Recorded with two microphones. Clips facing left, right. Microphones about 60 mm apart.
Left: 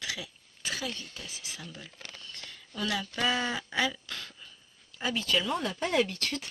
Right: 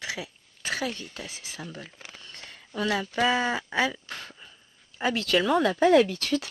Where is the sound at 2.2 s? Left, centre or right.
Right.